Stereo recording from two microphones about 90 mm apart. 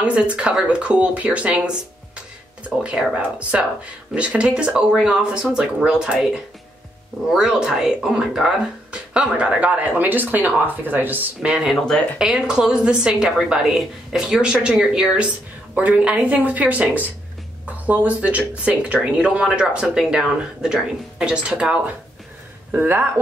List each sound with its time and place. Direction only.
0.0 s speech: 15° right (ahead or behind)
2.8 s speech: 10° right (ahead or behind)
11.4 s speech: 5° right (ahead or behind)
11.7 s speech: 5° left (ahead or behind)
12.2 s speech: 10° right (ahead or behind)
22.7 s speech: 25° right (ahead or behind)